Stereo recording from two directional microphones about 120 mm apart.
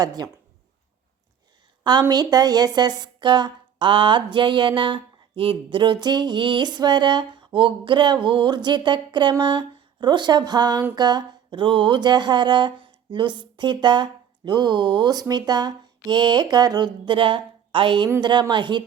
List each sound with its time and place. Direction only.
0.0 s a woman's voice: 35° right (ahead or behind)
1.8 s a woman's voice: 40° right (ahead or behind)